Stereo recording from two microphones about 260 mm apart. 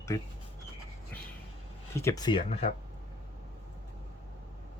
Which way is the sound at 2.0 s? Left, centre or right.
Centre.